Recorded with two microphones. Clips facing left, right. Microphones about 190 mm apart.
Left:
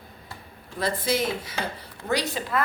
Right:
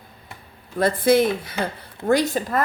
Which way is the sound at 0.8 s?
55° right (ahead or behind).